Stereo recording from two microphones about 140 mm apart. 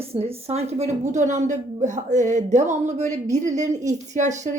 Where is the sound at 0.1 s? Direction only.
45° right (ahead or behind).